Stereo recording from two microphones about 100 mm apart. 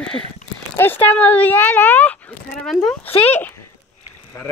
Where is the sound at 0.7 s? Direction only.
20° left (ahead or behind).